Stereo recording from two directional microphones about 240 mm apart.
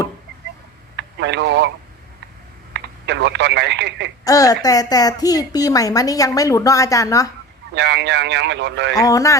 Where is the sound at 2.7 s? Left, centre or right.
Right.